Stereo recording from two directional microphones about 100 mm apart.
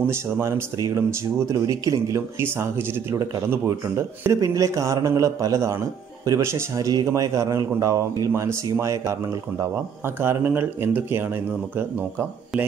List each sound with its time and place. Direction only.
0.0 s a man's voice: 25° right (ahead or behind)